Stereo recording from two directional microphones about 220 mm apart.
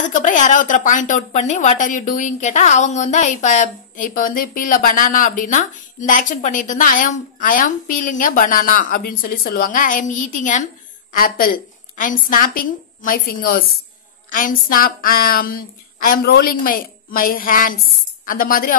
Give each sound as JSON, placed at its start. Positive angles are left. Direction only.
{"t": 0.0, "sound": "a woman's voice", "side_deg": 35}